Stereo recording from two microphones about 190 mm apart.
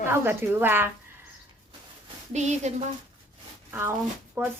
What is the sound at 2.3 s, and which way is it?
Speech, 35° right (ahead or behind).